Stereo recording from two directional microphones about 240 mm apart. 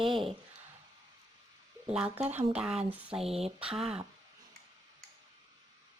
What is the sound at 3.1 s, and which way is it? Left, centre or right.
Speech, right.